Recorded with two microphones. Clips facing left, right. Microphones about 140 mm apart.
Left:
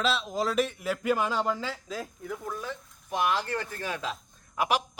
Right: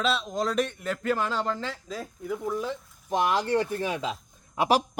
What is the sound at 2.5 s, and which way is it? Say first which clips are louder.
Speech: right 6 dB; 20° right (ahead or behind).